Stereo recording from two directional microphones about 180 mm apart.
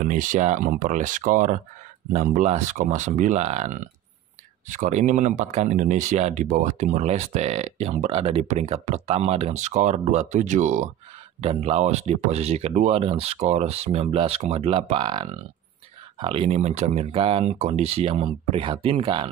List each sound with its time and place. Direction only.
0.0 s speech: 45° right (ahead or behind); by 19.2 s 30° right (ahead or behind)